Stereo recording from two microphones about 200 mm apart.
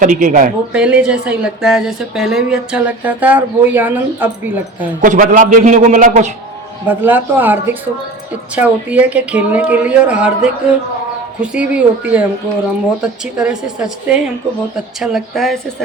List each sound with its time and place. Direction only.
0.0 s a man's voice: 40° right (ahead or behind)
0.7 s a woman's voice: 5° right (ahead or behind)
5.0 s a man's voice: 40° right (ahead or behind)
6.8 s a woman's voice: 10° right (ahead or behind)